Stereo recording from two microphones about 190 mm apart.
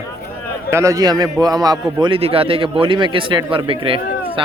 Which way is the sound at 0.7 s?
15° right (ahead or behind).